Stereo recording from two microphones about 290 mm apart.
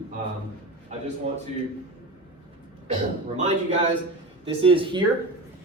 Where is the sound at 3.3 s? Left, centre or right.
Right.